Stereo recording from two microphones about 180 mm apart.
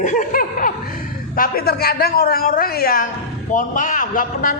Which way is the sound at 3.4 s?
45° left (ahead or behind).